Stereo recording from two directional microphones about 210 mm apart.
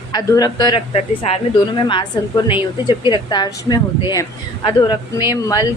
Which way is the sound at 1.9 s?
25° left (ahead or behind).